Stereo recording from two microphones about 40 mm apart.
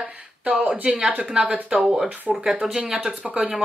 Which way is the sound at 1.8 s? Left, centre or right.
Centre.